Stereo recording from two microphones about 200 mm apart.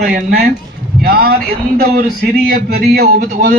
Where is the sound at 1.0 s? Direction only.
50° right (ahead or behind).